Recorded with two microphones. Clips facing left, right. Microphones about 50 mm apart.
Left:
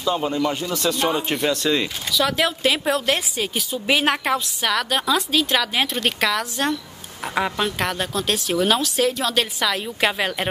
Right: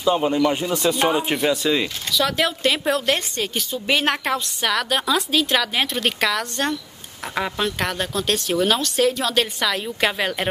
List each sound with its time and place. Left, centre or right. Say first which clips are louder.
0.0 s speech: right 3 dB; centre